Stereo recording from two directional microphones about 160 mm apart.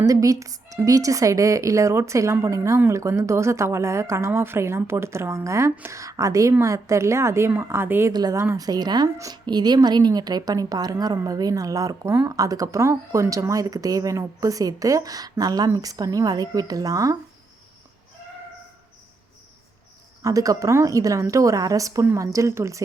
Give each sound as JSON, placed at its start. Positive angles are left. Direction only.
{"t": 0.0, "sound": "a woman's voice", "side_deg": -20}
{"t": 20.2, "sound": "a woman's voice", "side_deg": -20}